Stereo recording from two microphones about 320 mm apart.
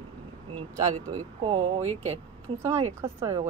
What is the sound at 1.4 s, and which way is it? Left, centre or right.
A woman's voice, centre.